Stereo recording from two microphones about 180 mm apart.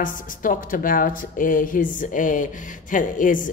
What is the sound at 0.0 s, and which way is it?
A woman's voice, 50° left (ahead or behind).